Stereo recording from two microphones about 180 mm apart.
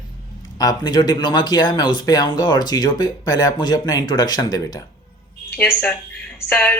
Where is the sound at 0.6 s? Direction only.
20° left (ahead or behind).